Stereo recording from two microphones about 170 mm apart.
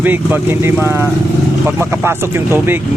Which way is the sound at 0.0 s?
10° right (ahead or behind).